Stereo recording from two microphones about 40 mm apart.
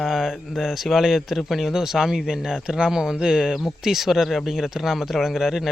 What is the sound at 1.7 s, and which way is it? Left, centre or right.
Speech, centre.